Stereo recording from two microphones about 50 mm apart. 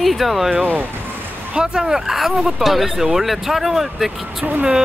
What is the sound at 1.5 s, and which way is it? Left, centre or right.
Speech, centre.